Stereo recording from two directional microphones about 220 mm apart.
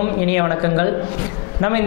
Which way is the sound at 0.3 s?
20° left (ahead or behind).